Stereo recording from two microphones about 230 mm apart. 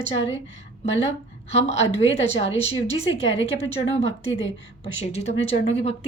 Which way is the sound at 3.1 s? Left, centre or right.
Left.